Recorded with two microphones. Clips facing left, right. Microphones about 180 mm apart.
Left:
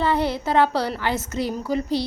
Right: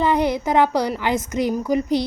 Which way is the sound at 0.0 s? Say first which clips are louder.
Right 3 dB; 15° right (ahead or behind).